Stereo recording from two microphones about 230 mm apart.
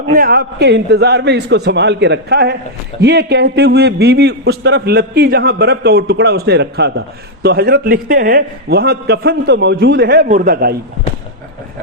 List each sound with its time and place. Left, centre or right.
0.1 s a man's voice: right